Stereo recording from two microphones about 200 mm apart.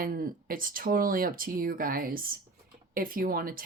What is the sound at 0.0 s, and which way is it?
Speech, 45° right (ahead or behind).